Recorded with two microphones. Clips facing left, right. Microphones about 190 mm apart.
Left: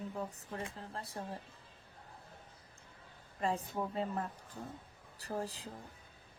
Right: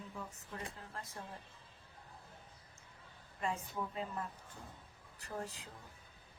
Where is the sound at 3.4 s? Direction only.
35° left (ahead or behind).